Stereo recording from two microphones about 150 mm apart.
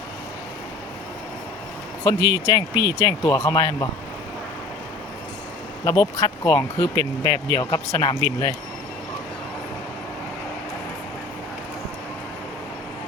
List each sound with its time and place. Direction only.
2.0 s speech: 25° left (ahead or behind)
5.8 s speech: 25° left (ahead or behind)